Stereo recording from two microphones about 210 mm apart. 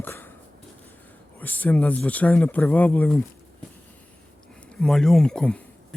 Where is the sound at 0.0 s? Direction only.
10° left (ahead or behind).